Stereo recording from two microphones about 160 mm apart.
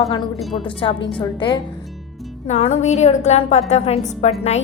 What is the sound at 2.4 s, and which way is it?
A woman's voice, 45° left (ahead or behind).